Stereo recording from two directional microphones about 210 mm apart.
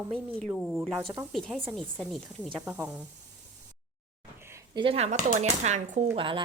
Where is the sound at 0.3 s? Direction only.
Centre (ahead or behind).